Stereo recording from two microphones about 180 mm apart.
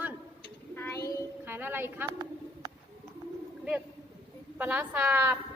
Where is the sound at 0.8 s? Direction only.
10° left (ahead or behind).